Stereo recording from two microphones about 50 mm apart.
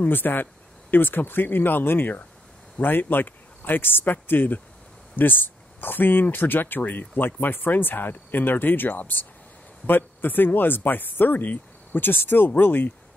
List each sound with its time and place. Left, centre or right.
0.0 s speech: left